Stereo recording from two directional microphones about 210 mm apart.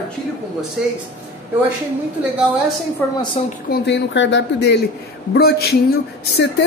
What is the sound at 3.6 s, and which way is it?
Speech, 55° left (ahead or behind).